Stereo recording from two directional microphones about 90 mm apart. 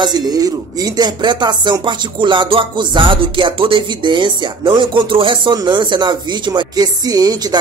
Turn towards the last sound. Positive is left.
turn(degrees=-45)  # may be behind; listen again after turning